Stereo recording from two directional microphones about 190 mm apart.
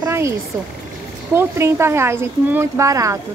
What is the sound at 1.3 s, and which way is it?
Speech, 15° right (ahead or behind).